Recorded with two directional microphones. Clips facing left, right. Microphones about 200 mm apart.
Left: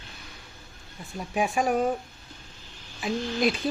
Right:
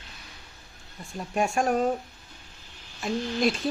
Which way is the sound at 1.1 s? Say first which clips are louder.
Even; centre (ahead or behind).